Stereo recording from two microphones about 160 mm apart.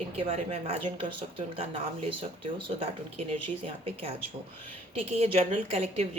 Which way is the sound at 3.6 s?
35° right (ahead or behind).